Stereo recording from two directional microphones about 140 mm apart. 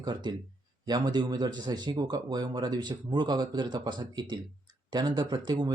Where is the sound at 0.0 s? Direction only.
30° right (ahead or behind).